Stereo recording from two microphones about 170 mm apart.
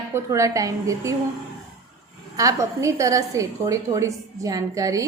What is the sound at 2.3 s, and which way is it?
A woman's voice, 20° right (ahead or behind).